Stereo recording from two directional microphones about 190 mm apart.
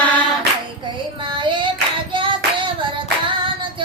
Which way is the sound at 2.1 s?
25° right (ahead or behind).